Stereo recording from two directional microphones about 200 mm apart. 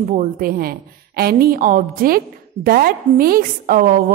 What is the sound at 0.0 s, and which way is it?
A woman's voice, 40° right (ahead or behind).